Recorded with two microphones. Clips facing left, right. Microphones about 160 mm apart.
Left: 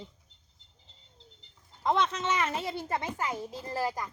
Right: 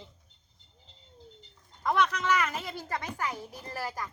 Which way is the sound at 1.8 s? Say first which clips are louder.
Even; 25° left (ahead or behind).